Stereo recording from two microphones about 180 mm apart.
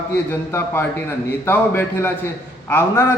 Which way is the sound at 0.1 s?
10° left (ahead or behind).